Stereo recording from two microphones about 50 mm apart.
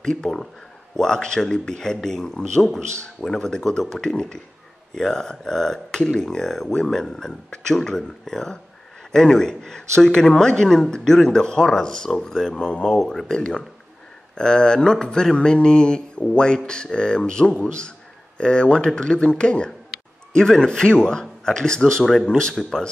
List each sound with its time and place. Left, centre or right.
0.0 s speech: centre
22.5 s speech: centre